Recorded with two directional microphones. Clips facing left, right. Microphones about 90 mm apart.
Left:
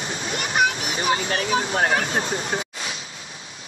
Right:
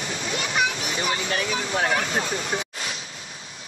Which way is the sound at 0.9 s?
35° left (ahead or behind).